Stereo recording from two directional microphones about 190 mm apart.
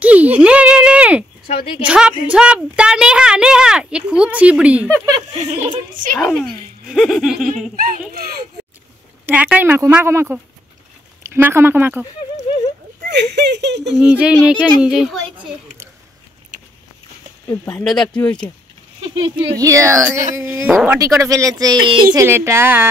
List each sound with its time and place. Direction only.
0.0 s a sound: 10° right (ahead or behind)
1.9 s speech: 5° right (ahead or behind)
4.9 s speech: 20° right (ahead or behind)
6.1 s speech: centre (ahead or behind)
7.7 s speech: 45° right (ahead or behind)
9.2 s speech: 10° right (ahead or behind)
13.1 s speech: 65° right (ahead or behind)
13.9 s speech: 5° right (ahead or behind)
17.5 s speech: 10° left (ahead or behind)
18.9 s speech: 25° right (ahead or behind)